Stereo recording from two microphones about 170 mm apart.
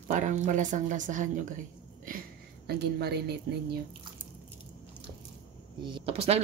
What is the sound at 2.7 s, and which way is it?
A woman's voice, 70° right (ahead or behind).